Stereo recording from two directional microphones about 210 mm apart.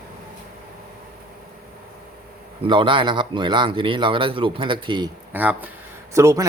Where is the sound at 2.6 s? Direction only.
25° right (ahead or behind).